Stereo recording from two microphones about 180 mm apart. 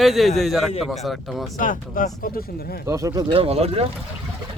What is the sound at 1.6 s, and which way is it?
Speech, 50° left (ahead or behind).